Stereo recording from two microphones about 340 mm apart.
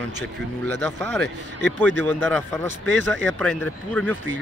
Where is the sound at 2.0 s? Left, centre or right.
Centre.